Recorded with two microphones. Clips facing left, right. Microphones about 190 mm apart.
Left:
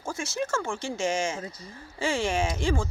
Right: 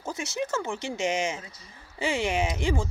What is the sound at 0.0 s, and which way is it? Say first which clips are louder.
Speech: even; 20° right (ahead or behind).